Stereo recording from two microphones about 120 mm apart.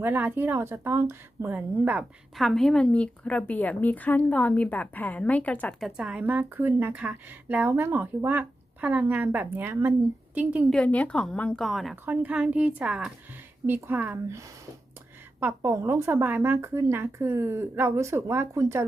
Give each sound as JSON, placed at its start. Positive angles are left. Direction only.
{"t": 0.0, "sound": "speech", "side_deg": -15}
{"t": 2.3, "sound": "a woman's voice", "side_deg": 0}
{"t": 6.0, "sound": "speech", "side_deg": -10}
{"t": 10.7, "sound": "a woman's voice", "side_deg": 10}
{"t": 12.0, "sound": "speech", "side_deg": -15}
{"t": 13.7, "sound": "speech", "side_deg": -15}